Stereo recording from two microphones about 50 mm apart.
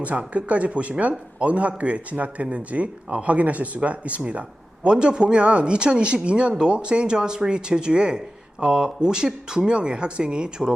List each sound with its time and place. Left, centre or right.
0.0 s speech: right